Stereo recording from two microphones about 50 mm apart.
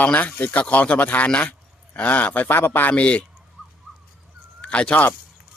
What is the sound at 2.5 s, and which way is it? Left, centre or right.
Speech, left.